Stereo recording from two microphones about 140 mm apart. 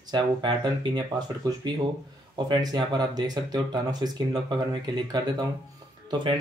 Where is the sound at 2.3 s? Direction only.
30° right (ahead or behind).